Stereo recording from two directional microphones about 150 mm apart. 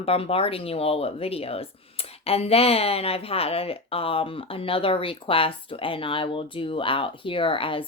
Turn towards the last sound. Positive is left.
turn(degrees=35)  # may be behind; listen again after turning